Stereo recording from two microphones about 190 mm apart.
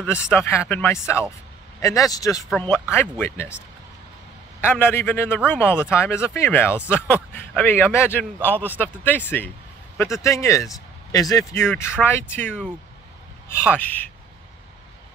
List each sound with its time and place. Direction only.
0.0 s speech: 10° left (ahead or behind)
4.7 s speech: 10° left (ahead or behind)
13.7 s speech: 10° left (ahead or behind)